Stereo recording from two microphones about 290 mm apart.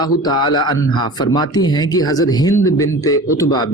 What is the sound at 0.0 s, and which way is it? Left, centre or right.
A man's voice, centre.